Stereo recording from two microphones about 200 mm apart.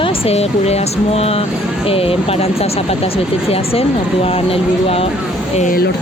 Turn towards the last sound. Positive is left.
turn(degrees=45)  # may be behind; listen again after turning